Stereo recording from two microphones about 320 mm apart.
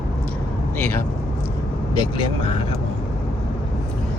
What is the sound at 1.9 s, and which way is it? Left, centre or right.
Speech, centre.